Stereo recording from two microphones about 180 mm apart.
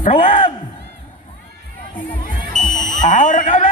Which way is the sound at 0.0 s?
35° left (ahead or behind).